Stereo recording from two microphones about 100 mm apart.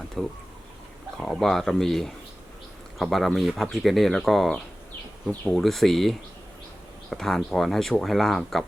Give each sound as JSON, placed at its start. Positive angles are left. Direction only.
{"t": 0.2, "sound": "speech", "side_deg": 5}
{"t": 5.3, "sound": "speech", "side_deg": 15}
{"t": 5.5, "sound": "speech", "side_deg": 0}